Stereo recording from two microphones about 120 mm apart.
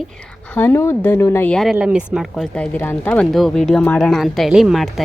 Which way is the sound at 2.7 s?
15° left (ahead or behind).